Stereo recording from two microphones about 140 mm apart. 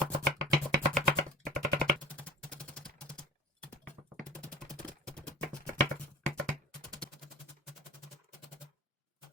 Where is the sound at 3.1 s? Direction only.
5° left (ahead or behind).